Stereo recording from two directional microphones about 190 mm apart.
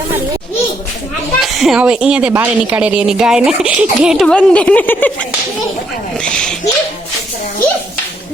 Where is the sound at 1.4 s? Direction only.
Centre (ahead or behind).